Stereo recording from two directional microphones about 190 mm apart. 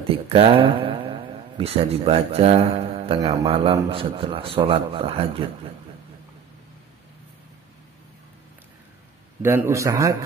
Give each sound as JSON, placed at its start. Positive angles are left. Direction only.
{"t": 0.0, "sound": "a man's voice", "side_deg": -30}
{"t": 9.4, "sound": "a man's voice", "side_deg": -10}